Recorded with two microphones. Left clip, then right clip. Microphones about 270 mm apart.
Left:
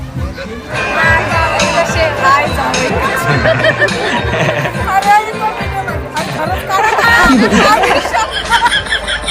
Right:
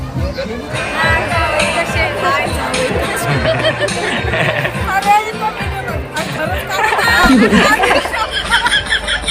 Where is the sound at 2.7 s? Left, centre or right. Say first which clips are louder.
Left 2 dB; left.